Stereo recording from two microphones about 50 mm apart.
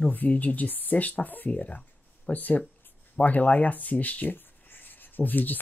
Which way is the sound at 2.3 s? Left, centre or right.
Left.